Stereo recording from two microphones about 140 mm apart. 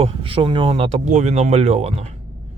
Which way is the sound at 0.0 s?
45° right (ahead or behind).